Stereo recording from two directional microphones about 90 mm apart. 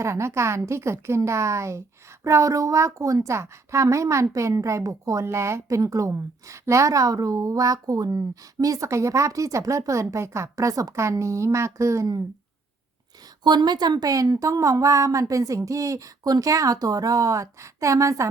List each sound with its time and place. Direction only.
0.0 s a woman's voice: 30° right (ahead or behind)
13.4 s a woman's voice: 55° right (ahead or behind); by 18.3 s 35° right (ahead or behind)